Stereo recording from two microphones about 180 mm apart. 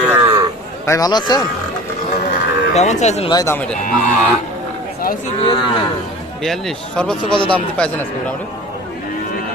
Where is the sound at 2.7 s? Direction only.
40° left (ahead or behind).